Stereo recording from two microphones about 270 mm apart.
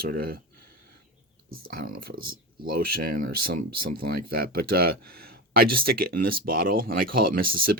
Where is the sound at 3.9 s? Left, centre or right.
Right.